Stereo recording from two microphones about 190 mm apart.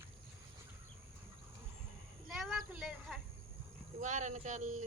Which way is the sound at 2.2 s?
Centre (ahead or behind).